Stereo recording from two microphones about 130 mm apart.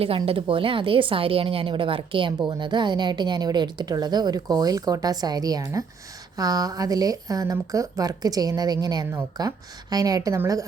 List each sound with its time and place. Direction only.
0.3 s a woman's voice: 45° right (ahead or behind); by 10.6 s 25° right (ahead or behind)